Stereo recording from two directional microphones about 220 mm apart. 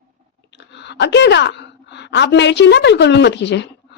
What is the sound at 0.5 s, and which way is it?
A woman's voice, 50° left (ahead or behind).